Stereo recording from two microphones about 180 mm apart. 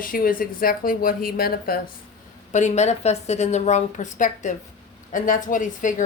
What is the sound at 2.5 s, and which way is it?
A woman's voice, 40° left (ahead or behind).